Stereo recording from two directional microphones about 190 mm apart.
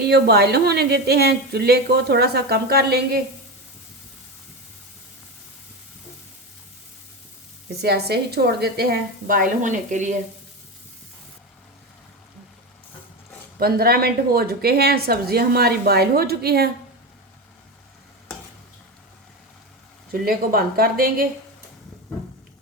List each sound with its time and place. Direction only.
0.1 s a woman's voice: 60° right (ahead or behind)
7.8 s a woman's voice: 55° right (ahead or behind); by 10.2 s 40° right (ahead or behind)
13.6 s a woman's voice: 55° right (ahead or behind)
20.1 s speech: 50° right (ahead or behind)